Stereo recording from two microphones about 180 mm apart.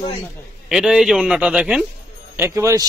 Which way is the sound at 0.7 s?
5° right (ahead or behind).